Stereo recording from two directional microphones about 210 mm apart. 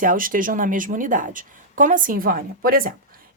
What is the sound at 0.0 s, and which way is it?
A woman's voice, 40° right (ahead or behind).